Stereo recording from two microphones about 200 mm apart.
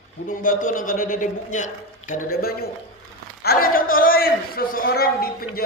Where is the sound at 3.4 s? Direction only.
50° left (ahead or behind).